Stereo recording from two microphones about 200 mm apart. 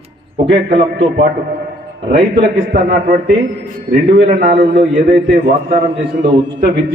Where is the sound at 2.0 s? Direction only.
35° right (ahead or behind).